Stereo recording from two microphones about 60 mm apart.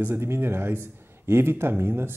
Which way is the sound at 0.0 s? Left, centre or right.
Right.